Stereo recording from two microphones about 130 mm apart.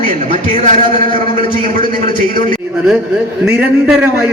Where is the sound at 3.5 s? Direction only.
10° right (ahead or behind).